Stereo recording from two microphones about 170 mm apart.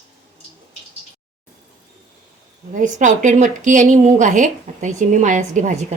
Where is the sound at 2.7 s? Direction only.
50° right (ahead or behind).